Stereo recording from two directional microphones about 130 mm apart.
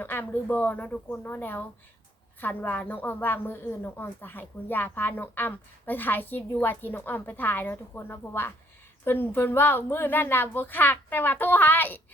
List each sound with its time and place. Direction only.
0.0 s a woman's voice: 15° left (ahead or behind)